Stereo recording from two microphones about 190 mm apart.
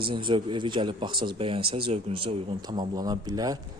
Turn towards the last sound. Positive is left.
turn(degrees=-20)  # may be behind; listen again after turning